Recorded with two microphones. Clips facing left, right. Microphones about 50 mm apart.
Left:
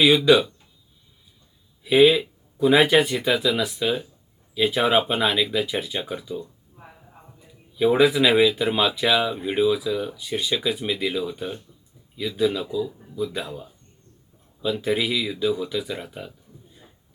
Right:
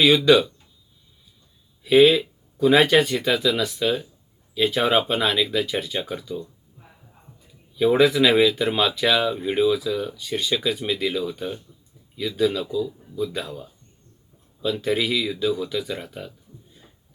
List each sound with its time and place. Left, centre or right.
0.0 s speech: centre
1.8 s speech: centre
6.7 s heart sounds: left
7.8 s speech: centre
16.7 s a sound: centre